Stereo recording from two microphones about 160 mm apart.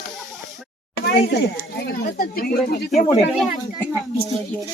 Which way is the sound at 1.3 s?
80° left.